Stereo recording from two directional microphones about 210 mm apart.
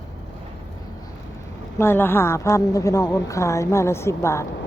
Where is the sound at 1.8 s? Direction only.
10° left (ahead or behind).